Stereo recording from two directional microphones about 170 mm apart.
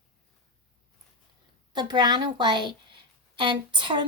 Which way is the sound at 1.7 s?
25° right (ahead or behind).